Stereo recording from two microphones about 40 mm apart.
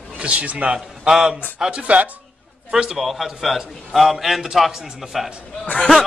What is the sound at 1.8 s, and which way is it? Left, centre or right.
Speech, right.